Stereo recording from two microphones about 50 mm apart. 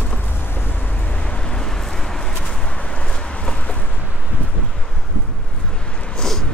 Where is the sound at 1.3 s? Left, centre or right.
Centre.